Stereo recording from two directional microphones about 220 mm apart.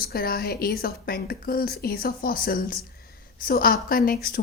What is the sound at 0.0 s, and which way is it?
A woman's voice, 45° left (ahead or behind).